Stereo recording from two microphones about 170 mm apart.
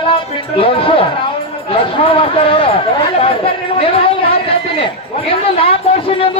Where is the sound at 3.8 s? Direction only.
35° left (ahead or behind).